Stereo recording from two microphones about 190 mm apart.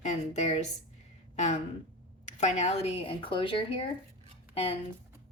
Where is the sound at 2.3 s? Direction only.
35° left (ahead or behind).